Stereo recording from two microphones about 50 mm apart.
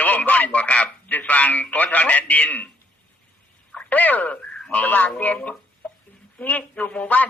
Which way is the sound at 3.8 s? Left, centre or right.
Left.